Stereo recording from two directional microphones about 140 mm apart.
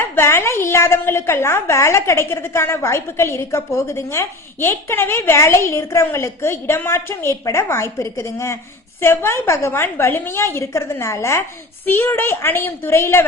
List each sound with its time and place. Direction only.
0.0 s a woman's voice: 15° left (ahead or behind)